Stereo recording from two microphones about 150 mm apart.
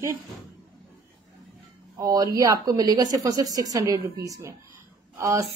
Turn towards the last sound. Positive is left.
turn(degrees=-20)  # may be behind; listen again after turning